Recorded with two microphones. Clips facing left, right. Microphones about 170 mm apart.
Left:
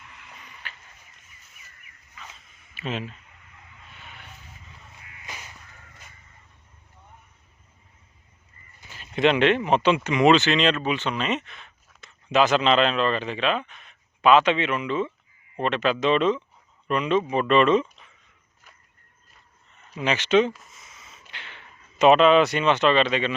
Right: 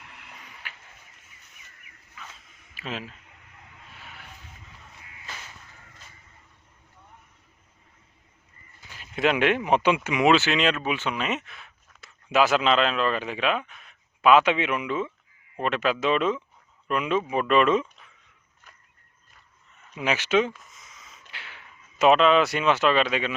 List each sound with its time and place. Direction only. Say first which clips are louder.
0.0 s a sound: even; 70° right (ahead or behind)
0.6 s a sound: left 2 dB; 10° right (ahead or behind)
2.7 s speech: left 4 dB; centre (ahead or behind)
4.0 s vehicle: even; centre (ahead or behind)
5.2 s crow: left 1 dB; 15° left (ahead or behind)
9.1 s speech: left 3 dB; 5° right (ahead or behind)
20.0 s speech: left 3 dB; 5° right (ahead or behind)
20.5 s a sound: left 4 dB; 5° left (ahead or behind)
21.3 s speech: left 1 dB; 5° right (ahead or behind)